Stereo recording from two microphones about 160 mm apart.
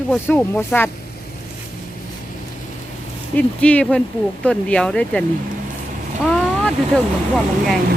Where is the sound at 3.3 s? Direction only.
10° left (ahead or behind).